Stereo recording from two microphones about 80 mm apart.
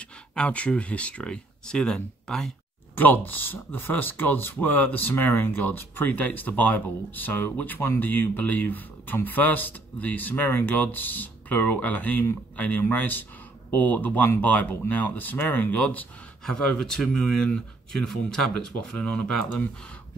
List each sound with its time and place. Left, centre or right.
0.4 s speech: centre
3.0 s speech: left
16.4 s speech: centre